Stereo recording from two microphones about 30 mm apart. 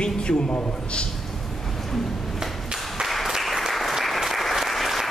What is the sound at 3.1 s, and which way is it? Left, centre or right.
Applause, centre.